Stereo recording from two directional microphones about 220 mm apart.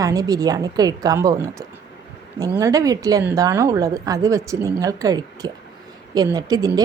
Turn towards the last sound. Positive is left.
turn(degrees=-15)  # may be behind; listen again after turning